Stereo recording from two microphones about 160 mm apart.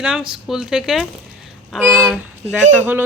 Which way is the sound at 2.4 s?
50° right (ahead or behind).